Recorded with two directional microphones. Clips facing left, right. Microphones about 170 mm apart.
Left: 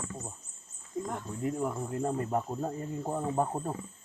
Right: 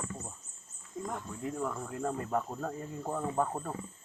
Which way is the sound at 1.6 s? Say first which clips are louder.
Left 3 dB; 20° left (ahead or behind).